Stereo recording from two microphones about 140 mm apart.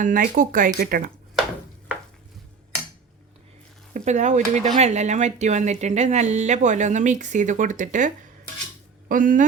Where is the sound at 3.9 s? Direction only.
60° right (ahead or behind).